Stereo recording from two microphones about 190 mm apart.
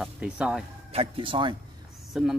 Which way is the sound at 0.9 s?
30° right (ahead or behind).